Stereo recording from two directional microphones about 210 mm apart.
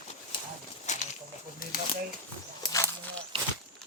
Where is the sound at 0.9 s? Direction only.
35° left (ahead or behind).